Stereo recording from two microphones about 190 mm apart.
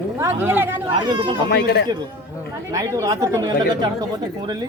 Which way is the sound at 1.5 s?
55° left (ahead or behind).